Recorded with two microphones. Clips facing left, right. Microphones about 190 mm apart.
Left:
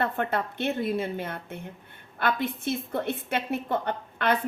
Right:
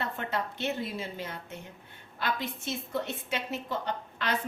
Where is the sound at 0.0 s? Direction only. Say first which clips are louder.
Left 6 dB; 55° left (ahead or behind).